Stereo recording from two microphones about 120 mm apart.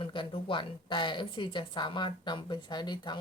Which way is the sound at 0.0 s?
45° left (ahead or behind).